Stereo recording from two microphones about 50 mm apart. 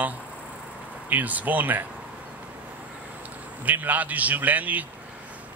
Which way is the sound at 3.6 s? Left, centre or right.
Right.